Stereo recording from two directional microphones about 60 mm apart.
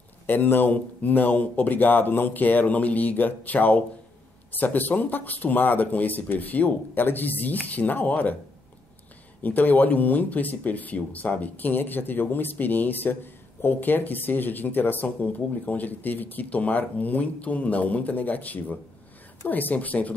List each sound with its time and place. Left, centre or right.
0.3 s speech: left
9.4 s speech: left